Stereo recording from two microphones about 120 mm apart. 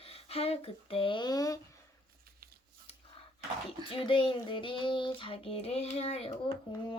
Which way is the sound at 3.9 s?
45° left (ahead or behind).